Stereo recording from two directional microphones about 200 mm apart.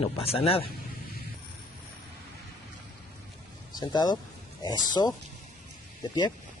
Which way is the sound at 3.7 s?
20° left (ahead or behind).